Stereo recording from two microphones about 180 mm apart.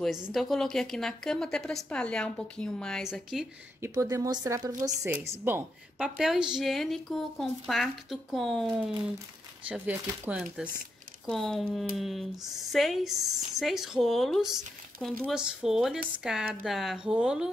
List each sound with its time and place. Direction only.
0.0 s a woman's voice: centre (ahead or behind)
3.8 s a woman's voice: 15° right (ahead or behind)